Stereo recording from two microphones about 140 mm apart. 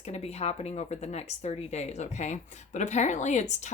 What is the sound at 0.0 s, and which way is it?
Speech, 50° left (ahead or behind).